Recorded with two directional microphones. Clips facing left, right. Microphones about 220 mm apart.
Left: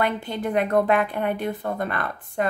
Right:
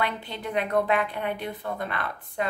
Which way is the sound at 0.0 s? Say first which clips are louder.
Left 6 dB; 50° left (ahead or behind).